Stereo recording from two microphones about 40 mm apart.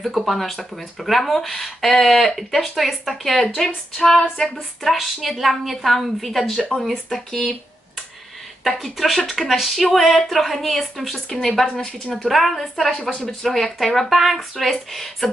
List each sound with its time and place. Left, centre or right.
0.0 s speech: centre
4.9 s speech: centre
8.9 s speech: centre
11.2 s speech: centre
12.2 s speech: centre